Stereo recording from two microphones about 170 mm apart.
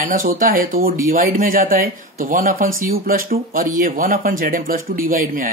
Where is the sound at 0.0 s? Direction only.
55° right (ahead or behind).